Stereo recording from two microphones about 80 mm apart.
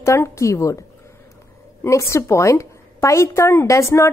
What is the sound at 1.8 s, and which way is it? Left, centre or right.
Speech, left.